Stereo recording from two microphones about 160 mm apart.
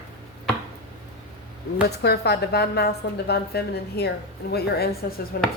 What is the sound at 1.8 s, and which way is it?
A woman's voice, 90° left.